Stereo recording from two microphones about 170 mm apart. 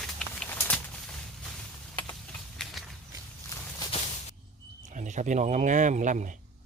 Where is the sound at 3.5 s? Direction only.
20° left (ahead or behind).